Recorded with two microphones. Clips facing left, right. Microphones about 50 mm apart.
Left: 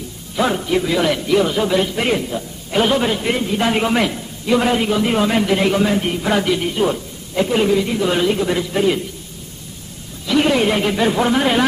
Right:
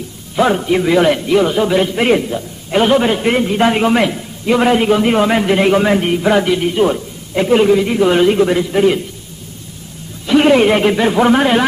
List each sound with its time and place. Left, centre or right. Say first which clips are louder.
0.4 s a man's voice: right 4 dB; centre
3.7 s a man's voice: right 4 dB; centre; by 6.1 s right
6.1 s a man's voice: right 5 dB; centre
10.2 s a man's voice: right 6 dB; right